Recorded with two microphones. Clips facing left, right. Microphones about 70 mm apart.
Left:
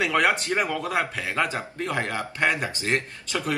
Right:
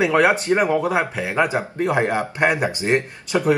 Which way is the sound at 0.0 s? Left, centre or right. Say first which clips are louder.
Right 6 dB; right.